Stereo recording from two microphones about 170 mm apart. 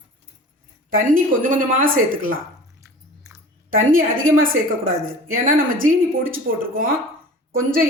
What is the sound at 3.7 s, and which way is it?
A woman's voice, 55° right (ahead or behind).